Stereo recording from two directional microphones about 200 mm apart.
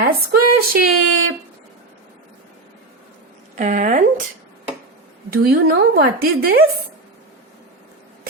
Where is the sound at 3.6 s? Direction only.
40° right (ahead or behind).